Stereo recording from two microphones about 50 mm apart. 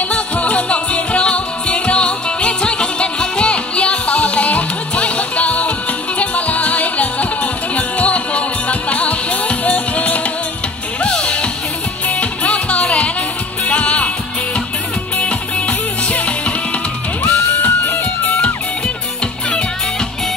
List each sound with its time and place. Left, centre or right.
0.1 s music: left
11.1 s music: centre
12.2 s music: left
15.1 s music: left
17.2 s music: left
17.6 s music: left
18.2 s music: left